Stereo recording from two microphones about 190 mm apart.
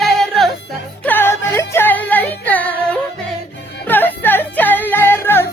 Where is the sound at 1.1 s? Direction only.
10° left (ahead or behind).